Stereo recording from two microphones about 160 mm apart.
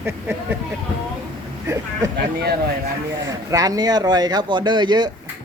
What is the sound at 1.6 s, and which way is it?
Speech, 20° right (ahead or behind).